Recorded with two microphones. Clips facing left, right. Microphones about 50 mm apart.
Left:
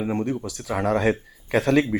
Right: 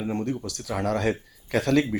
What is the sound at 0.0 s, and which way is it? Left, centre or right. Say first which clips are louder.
Speech: left 3 dB; centre.